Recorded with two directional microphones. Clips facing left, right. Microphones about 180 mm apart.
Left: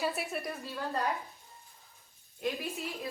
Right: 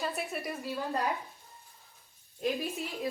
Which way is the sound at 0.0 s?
Centre (ahead or behind).